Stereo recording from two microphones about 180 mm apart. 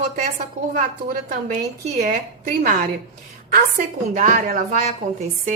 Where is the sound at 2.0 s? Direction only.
55° right (ahead or behind).